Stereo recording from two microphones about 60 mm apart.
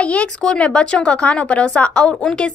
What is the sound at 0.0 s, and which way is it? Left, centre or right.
A woman's voice, left.